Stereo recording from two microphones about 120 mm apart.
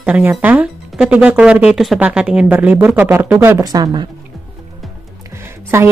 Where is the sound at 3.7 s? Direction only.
35° right (ahead or behind).